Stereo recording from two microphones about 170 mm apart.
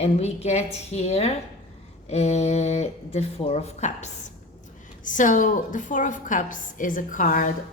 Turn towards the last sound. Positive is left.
turn(degrees=50)  # may be behind; listen again after turning